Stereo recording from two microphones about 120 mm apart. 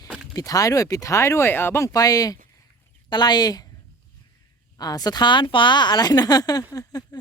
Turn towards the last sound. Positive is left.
turn(degrees=30)  # may be behind; listen again after turning